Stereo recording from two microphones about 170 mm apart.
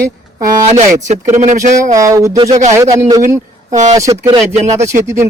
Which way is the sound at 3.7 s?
45° right (ahead or behind).